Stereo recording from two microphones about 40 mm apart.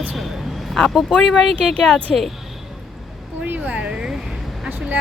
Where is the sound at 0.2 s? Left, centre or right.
Centre.